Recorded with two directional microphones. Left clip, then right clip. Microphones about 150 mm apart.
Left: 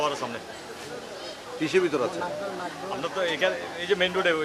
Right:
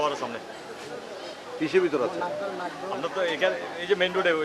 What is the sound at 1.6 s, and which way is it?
Speech, 15° right (ahead or behind).